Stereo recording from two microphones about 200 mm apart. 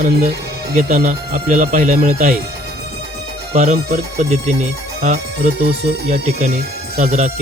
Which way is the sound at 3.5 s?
35° right (ahead or behind).